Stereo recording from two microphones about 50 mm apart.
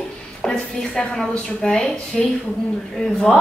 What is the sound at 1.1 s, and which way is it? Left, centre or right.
A woman's voice, centre.